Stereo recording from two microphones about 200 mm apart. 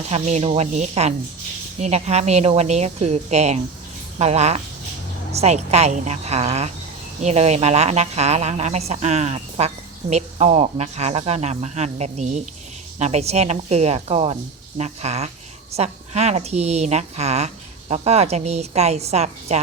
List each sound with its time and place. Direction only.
0.1 s speech: 30° right (ahead or behind)